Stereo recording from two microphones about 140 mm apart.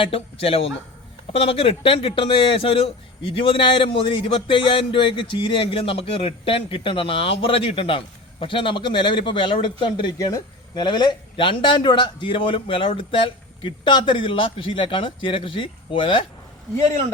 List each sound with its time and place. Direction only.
0.0 s a man's voice: 45° left (ahead or behind)